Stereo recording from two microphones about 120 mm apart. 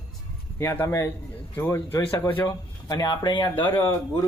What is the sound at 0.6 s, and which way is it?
A man's voice, 20° left (ahead or behind).